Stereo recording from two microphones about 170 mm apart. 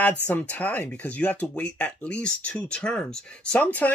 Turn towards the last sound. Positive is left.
turn(degrees=10)  # may be behind; listen again after turning